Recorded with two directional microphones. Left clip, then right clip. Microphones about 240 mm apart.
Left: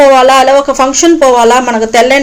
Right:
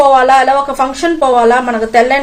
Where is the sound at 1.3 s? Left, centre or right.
Left.